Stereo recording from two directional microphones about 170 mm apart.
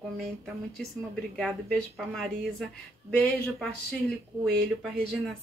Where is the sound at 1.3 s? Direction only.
5° left (ahead or behind).